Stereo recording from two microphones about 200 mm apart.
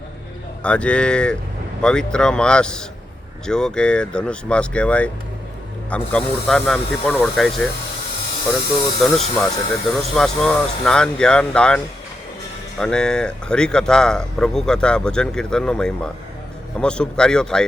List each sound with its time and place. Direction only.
0.6 s speech: 5° left (ahead or behind)
9.0 s speech: centre (ahead or behind)
12.8 s speech: 5° left (ahead or behind)